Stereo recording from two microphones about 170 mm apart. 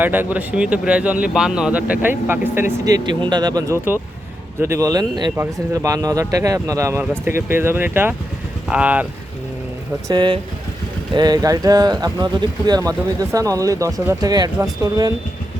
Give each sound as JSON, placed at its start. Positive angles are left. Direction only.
{"t": 0.0, "sound": "speech", "side_deg": -10}
{"t": 10.1, "sound": "speech", "side_deg": -25}